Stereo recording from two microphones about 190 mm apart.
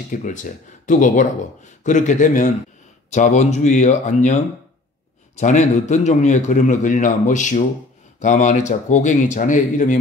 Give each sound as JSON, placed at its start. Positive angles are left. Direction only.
{"t": 0.1, "sound": "a man's voice", "side_deg": 45}